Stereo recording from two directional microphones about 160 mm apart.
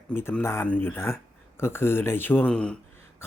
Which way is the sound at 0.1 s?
15° left (ahead or behind).